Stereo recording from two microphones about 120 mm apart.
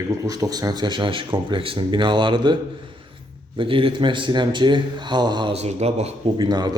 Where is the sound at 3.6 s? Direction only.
45° right (ahead or behind).